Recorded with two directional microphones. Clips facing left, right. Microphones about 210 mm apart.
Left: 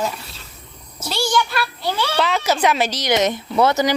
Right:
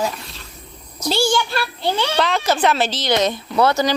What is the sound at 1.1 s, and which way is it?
Speech, 30° right (ahead or behind).